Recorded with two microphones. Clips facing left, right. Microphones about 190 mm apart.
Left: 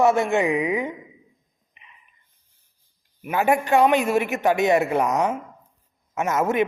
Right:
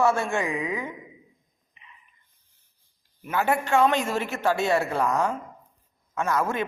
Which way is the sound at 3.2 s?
15° left (ahead or behind).